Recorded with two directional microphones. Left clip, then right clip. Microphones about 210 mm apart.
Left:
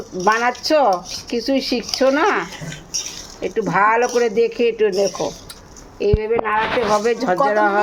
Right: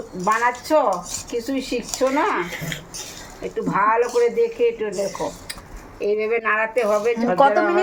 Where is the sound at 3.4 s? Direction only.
60° left (ahead or behind).